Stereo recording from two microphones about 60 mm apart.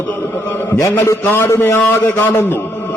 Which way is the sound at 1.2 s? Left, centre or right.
Left.